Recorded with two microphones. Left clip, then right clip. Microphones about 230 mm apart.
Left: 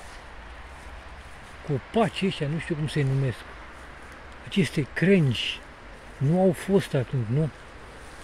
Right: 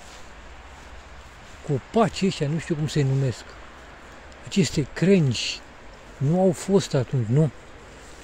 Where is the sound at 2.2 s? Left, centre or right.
Right.